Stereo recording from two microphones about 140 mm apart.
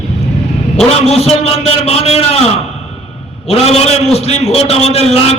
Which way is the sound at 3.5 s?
45° left (ahead or behind).